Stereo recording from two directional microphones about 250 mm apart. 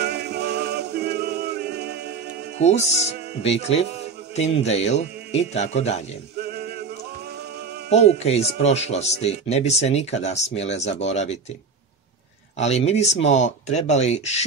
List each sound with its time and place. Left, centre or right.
0.0 s music: right
2.6 s speech: left
7.9 s speech: left
12.5 s speech: left